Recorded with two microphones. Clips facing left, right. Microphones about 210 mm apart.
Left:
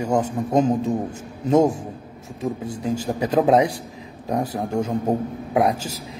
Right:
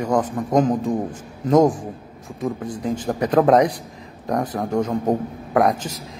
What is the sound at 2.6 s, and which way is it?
A man's voice, 10° left (ahead or behind).